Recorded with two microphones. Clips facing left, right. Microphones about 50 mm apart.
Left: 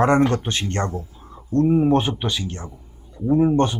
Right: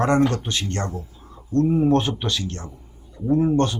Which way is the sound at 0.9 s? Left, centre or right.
Centre.